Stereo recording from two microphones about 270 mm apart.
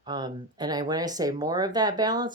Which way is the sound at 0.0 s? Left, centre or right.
Centre.